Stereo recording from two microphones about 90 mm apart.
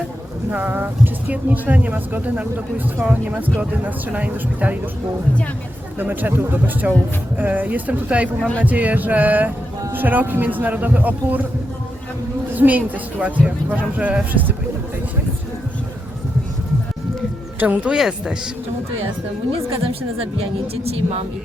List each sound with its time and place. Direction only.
0.5 s speech: 20° right (ahead or behind)
6.0 s speech: 20° right (ahead or behind)
12.5 s speech: 20° right (ahead or behind)
17.6 s speech: 15° right (ahead or behind)
17.9 s speech: 5° right (ahead or behind)
19.5 s a woman's voice: 90° right